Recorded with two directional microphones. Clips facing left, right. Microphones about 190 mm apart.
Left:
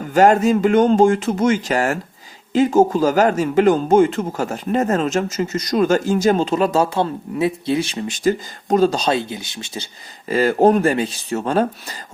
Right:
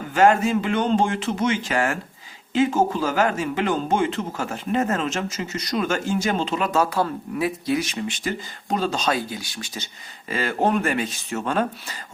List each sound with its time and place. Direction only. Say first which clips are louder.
0.1 s speech: left 4 dB; 40° left (ahead or behind)